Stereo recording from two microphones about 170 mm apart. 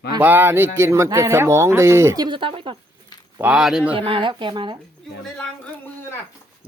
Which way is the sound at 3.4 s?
5° right (ahead or behind).